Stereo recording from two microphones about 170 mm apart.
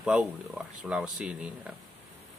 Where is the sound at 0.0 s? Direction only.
5° right (ahead or behind).